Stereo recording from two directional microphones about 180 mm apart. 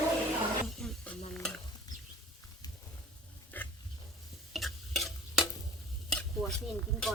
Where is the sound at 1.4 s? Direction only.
5° left (ahead or behind).